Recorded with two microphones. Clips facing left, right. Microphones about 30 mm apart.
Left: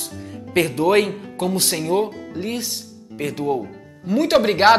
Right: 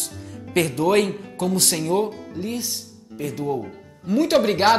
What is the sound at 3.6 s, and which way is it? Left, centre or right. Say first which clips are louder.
Speech: left 2 dB; centre.